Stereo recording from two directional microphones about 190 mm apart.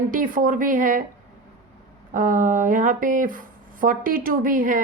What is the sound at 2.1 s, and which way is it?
A woman's voice, 45° right (ahead or behind).